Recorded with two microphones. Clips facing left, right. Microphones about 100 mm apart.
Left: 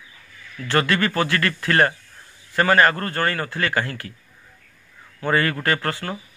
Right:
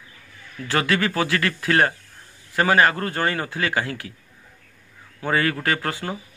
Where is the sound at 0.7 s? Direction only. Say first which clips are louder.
Left 1 dB; 5° right (ahead or behind).